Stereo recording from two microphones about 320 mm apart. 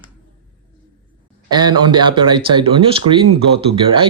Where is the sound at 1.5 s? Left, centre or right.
Centre.